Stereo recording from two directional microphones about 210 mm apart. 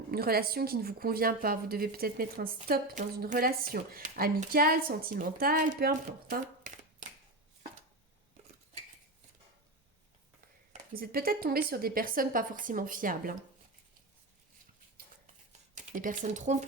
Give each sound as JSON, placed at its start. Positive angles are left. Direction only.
{"t": 0.1, "sound": "a woman's voice", "side_deg": -45}
{"t": 10.7, "sound": "a woman's voice", "side_deg": -45}
{"t": 15.7, "sound": "speech", "side_deg": -35}